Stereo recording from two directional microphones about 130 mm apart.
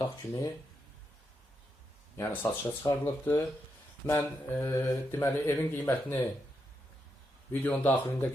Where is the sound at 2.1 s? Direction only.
15° left (ahead or behind).